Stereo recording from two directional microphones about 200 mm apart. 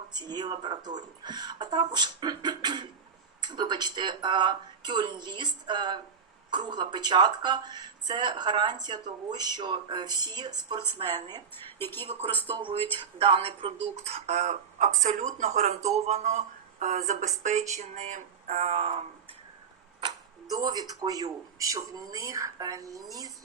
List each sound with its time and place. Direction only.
0.1 s speech: 20° right (ahead or behind)
11.8 s a woman's voice: 10° left (ahead or behind)
12.5 s speech: 25° right (ahead or behind)
20.0 s speech: 20° right (ahead or behind)